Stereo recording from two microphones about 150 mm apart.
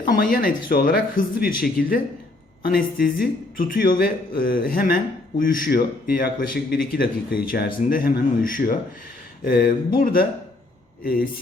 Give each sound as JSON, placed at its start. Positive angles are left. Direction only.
{"t": 0.0, "sound": "a man's voice", "side_deg": 65}